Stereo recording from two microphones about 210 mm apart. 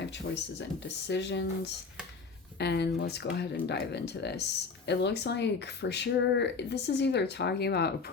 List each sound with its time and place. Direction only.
0.6 s speech: 55° left (ahead or behind)